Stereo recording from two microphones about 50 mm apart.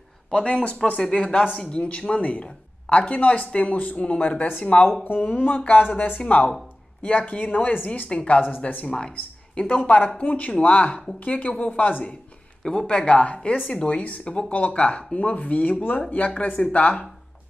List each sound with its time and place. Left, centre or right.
0.3 s speech: left
8.1 s speech: left
8.4 s speech: left
12.6 s speech: centre